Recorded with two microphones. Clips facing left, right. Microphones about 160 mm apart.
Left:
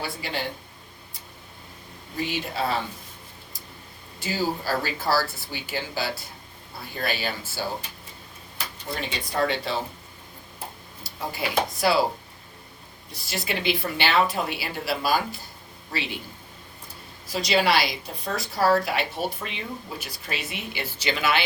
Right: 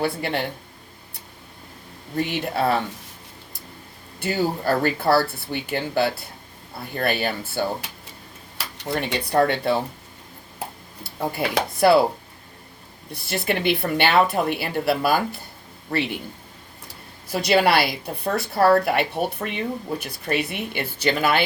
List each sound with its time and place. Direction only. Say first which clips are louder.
0.0 s a woman's voice: right 7 dB; 60° right (ahead or behind)
2.1 s a woman's voice: right 5 dB; 55° right (ahead or behind)
4.2 s a woman's voice: right 4 dB; 60° right (ahead or behind)
8.5 s speech: right 6 dB; 75° right (ahead or behind); by 9.7 s 60° right (ahead or behind)
11.0 s dishes: right 7 dB; 55° right (ahead or behind)
11.5 s a woman's voice: right 6 dB; 55° right (ahead or behind)
13.1 s a woman's voice: right 6 dB; 60° right (ahead or behind)
17.3 s a woman's voice: right 4 dB; 55° right (ahead or behind)